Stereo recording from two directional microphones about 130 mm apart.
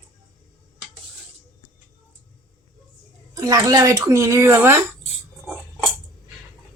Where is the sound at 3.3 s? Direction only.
25° right (ahead or behind).